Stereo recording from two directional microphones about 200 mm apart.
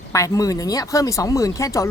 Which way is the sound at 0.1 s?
15° left (ahead or behind).